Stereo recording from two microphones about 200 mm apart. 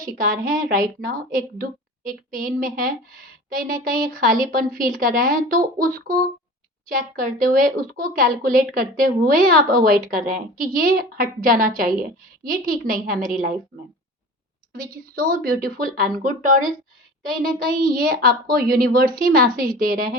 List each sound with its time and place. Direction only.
0.0 s a woman's voice: 45° right (ahead or behind)
14.7 s a woman's voice: 45° right (ahead or behind)